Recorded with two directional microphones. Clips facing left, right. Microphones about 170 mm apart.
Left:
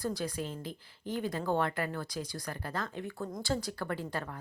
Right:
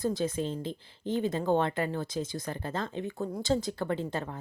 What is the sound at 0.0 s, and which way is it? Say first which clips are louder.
Speech: right 5 dB; 25° right (ahead or behind).